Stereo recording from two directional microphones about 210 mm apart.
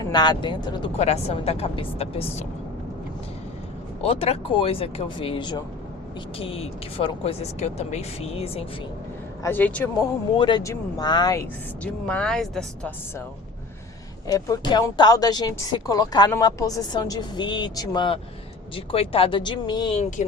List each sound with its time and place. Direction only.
0.0 s speech: 20° left (ahead or behind)
4.0 s speech: 30° left (ahead or behind)
9.4 s speech: 10° left (ahead or behind)
10.3 s speech: 20° left (ahead or behind)
11.8 s speech: 5° left (ahead or behind)
14.3 s speech: 15° left (ahead or behind)